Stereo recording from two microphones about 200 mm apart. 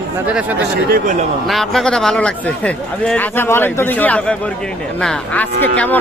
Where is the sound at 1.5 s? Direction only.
Centre (ahead or behind).